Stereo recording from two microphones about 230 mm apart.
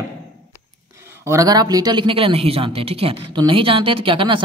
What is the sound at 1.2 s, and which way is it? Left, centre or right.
Speech, centre.